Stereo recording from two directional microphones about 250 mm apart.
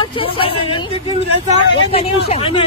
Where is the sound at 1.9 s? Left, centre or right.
Left.